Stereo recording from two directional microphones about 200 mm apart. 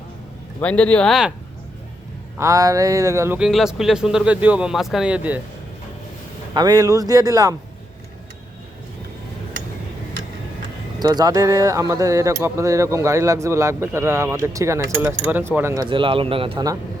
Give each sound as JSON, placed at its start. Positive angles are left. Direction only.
{"t": 0.6, "sound": "speech", "side_deg": 5}
{"t": 2.4, "sound": "speech", "side_deg": -15}
{"t": 6.5, "sound": "speech", "side_deg": -20}
{"t": 11.0, "sound": "speech", "side_deg": -20}